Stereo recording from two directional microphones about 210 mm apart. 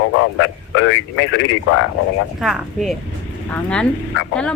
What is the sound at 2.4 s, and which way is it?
A woman's voice, centre (ahead or behind).